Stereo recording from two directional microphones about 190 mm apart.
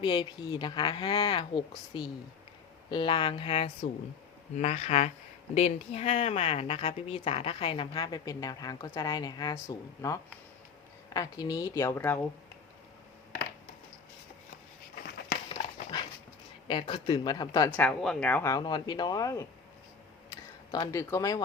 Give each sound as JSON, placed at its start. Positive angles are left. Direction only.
{"t": 0.0, "sound": "speech", "side_deg": 25}
{"t": 15.4, "sound": "dog", "side_deg": 25}
{"t": 16.6, "sound": "speech", "side_deg": 25}
{"t": 17.7, "sound": "speech", "side_deg": 5}
{"t": 18.5, "sound": "speech", "side_deg": 25}